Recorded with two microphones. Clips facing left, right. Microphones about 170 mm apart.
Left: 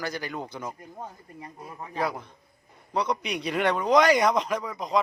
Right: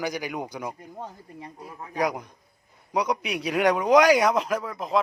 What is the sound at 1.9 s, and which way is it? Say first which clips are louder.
A man's voice: right 3 dB; 15° right (ahead or behind).